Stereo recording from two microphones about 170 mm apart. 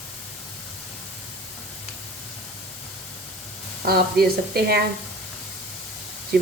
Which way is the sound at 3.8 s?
65° right (ahead or behind).